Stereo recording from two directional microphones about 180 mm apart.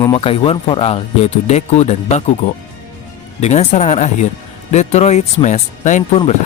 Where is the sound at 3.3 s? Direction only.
40° left (ahead or behind).